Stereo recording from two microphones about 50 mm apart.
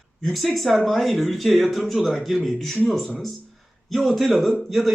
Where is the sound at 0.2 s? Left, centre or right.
Centre.